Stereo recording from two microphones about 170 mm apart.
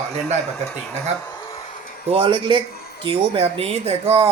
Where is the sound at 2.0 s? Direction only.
35° right (ahead or behind).